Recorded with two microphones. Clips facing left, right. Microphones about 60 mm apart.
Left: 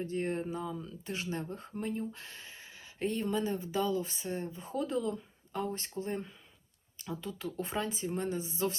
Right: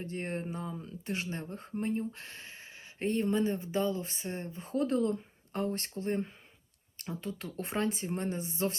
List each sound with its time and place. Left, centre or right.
0.0 s speech: right